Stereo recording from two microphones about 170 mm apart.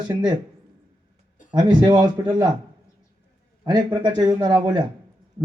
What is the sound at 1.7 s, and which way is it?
Speech, 25° right (ahead or behind).